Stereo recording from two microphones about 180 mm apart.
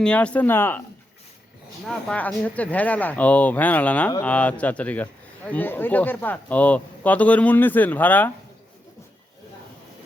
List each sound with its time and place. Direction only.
0.0 s speech: 5° left (ahead or behind)
1.8 s speech: 5° left (ahead or behind)